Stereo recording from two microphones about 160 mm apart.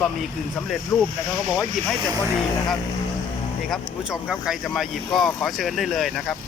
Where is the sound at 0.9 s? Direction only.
20° left (ahead or behind).